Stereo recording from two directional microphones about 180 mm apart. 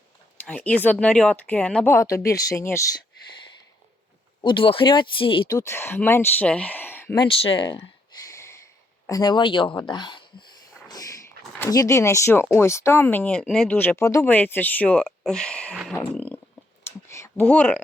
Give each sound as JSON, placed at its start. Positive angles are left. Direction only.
{"t": 0.3, "sound": "speech", "side_deg": 5}
{"t": 4.4, "sound": "speech", "side_deg": 25}
{"t": 5.5, "sound": "speech", "side_deg": 15}
{"t": 7.2, "sound": "speech", "side_deg": 30}
{"t": 10.8, "sound": "a sound", "side_deg": 20}
{"t": 11.6, "sound": "speech", "side_deg": 20}
{"t": 16.1, "sound": "a sound", "side_deg": 10}